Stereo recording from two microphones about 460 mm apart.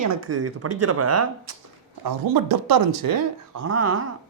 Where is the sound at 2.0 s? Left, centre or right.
Right.